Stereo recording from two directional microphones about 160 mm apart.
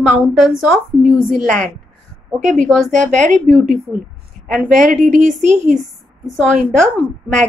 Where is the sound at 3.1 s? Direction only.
50° right (ahead or behind).